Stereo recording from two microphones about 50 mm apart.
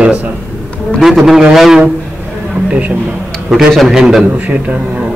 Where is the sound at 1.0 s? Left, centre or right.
Centre.